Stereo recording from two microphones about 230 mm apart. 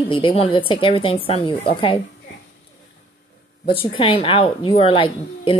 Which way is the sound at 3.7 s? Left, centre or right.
Left.